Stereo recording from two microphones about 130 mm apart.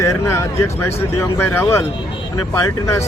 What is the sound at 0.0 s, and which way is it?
Speech, 20° left (ahead or behind).